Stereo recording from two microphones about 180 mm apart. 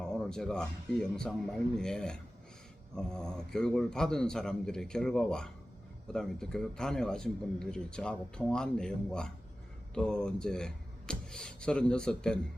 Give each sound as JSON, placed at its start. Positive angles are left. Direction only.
{"t": 0.0, "sound": "speech", "side_deg": 5}